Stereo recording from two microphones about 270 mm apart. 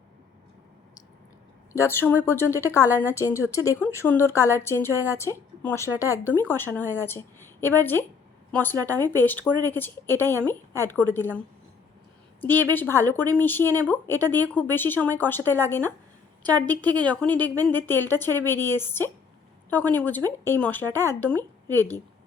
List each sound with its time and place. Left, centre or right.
1.7 s a woman's voice: centre
12.4 s a woman's voice: centre
16.6 s speech: centre
17.1 s speech: centre
17.5 s speech: centre
17.7 s a woman's voice: centre